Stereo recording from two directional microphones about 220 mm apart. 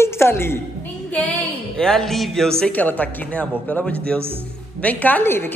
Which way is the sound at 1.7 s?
5° left (ahead or behind).